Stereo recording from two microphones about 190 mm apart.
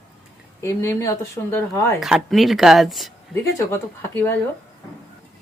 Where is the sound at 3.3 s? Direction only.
10° left (ahead or behind).